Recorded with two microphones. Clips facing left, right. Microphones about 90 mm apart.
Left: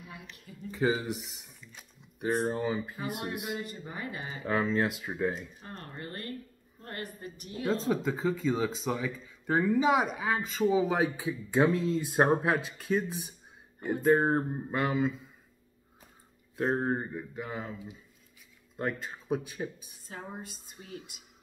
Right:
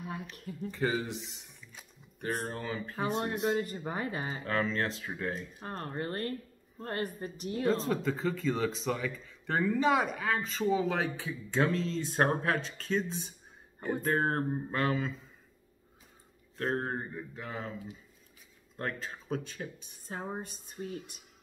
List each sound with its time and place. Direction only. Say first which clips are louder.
0.0 s a sound: right 7 dB; 45° right (ahead or behind)
0.7 s speech: left 3 dB; 5° left (ahead or behind)
2.6 s speech: left 5 dB; 15° left (ahead or behind)
3.0 s speech: right 4 dB; 35° right (ahead or behind)
4.5 s speech: left 4 dB; 15° left (ahead or behind)
5.6 s speech: right 6 dB; 40° right (ahead or behind)
7.6 s speech: left 1 dB; centre (ahead or behind)
16.5 s speech: left 4 dB; 10° left (ahead or behind)
18.8 s speech: left 3 dB; 5° left (ahead or behind)
20.1 s speech: right 3 dB; 30° right (ahead or behind)